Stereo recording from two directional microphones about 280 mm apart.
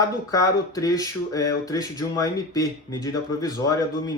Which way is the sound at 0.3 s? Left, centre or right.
Centre.